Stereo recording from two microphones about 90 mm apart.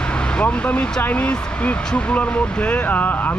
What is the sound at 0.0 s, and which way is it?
Speech, 10° left (ahead or behind).